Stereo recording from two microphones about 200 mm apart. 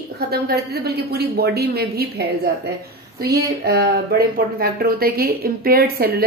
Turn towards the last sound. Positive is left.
turn(degrees=-50)  # may be behind; listen again after turning